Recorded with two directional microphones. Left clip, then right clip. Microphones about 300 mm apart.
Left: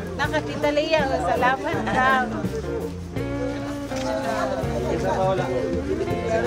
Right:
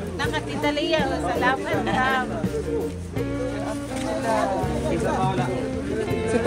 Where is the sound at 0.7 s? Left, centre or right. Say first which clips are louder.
Left 2 dB; left.